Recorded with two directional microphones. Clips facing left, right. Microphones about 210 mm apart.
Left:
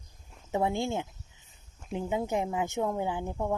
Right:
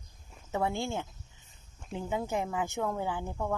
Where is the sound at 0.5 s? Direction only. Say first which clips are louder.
Left 3 dB; 20° left (ahead or behind).